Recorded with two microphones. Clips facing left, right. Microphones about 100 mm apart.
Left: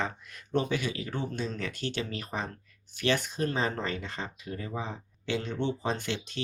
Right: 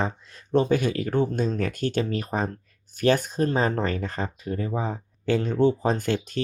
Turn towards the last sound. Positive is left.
turn(degrees=-45)  # may be behind; listen again after turning